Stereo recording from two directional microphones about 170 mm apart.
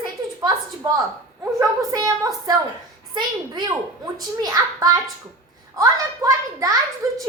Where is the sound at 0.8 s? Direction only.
25° right (ahead or behind).